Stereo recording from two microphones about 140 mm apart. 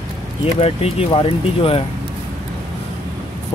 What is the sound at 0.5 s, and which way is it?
Speech, 45° left (ahead or behind).